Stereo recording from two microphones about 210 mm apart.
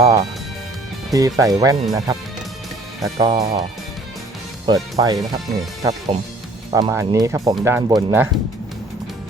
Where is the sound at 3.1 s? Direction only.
20° right (ahead or behind).